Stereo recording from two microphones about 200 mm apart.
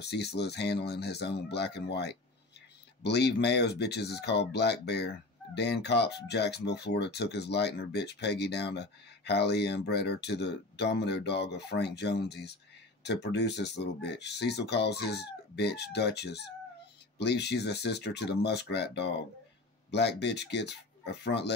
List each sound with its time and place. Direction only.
0.0 s speech: 55° left (ahead or behind)